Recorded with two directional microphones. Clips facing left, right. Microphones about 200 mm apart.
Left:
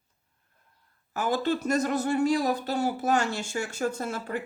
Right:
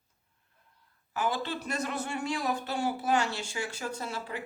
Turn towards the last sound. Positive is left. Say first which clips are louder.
# left 5 dB
turn(degrees=50)  # may be behind; listen again after turning